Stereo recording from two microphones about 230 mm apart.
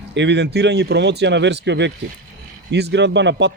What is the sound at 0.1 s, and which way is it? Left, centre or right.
Speech, right.